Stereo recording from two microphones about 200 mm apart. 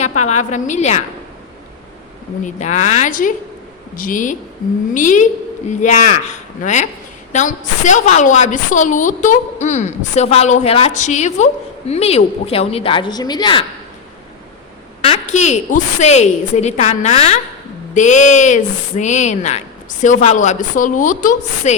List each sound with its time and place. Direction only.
0.2 s a woman's voice: 35° left (ahead or behind)
2.4 s a woman's voice: 35° left (ahead or behind)
15.0 s a woman's voice: 35° left (ahead or behind)